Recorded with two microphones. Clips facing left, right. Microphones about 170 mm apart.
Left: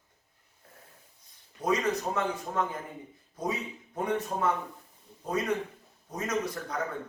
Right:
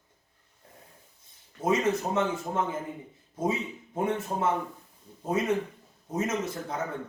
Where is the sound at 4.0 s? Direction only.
25° right (ahead or behind).